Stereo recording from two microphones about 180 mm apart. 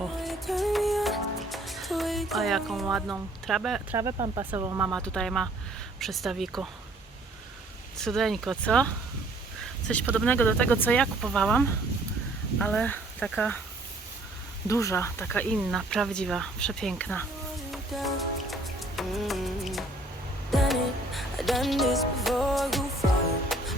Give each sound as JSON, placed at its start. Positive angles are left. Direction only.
{"t": 0.2, "sound": "music", "side_deg": 0}
{"t": 3.4, "sound": "speech", "side_deg": 0}
{"t": 3.9, "sound": "speech", "side_deg": -20}
{"t": 4.9, "sound": "speech", "side_deg": 5}
{"t": 7.9, "sound": "speech", "side_deg": 5}
{"t": 10.2, "sound": "speech", "side_deg": 10}
{"t": 14.7, "sound": "speech", "side_deg": 15}
{"t": 15.5, "sound": "speech", "side_deg": 0}
{"t": 17.7, "sound": "music", "side_deg": 0}